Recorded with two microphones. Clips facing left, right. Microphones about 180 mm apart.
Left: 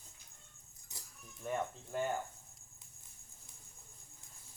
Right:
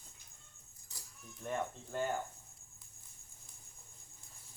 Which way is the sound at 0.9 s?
20° left (ahead or behind).